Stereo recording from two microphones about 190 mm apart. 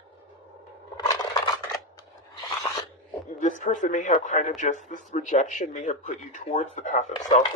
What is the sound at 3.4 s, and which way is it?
Speech, 40° left (ahead or behind).